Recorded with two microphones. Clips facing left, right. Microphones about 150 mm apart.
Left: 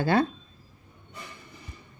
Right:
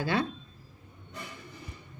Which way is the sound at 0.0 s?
45° left (ahead or behind).